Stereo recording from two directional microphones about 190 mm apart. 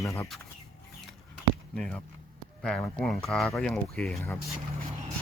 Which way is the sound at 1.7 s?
5° left (ahead or behind).